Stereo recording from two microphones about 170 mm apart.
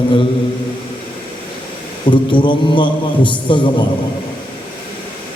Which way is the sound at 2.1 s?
30° left (ahead or behind).